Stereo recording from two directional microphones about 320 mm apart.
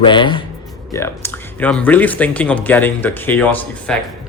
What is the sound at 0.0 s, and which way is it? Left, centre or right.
Speech, centre.